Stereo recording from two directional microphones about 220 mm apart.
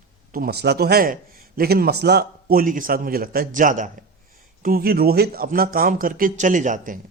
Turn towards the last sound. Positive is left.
turn(degrees=-35)  # may be behind; listen again after turning